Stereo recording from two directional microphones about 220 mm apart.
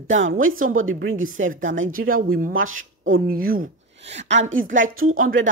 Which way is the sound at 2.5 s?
65° right (ahead or behind).